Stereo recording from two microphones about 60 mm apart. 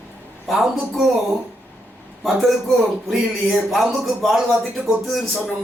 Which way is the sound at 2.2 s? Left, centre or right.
Centre.